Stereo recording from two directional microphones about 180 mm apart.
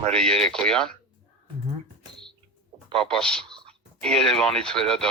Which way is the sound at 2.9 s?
5° left (ahead or behind).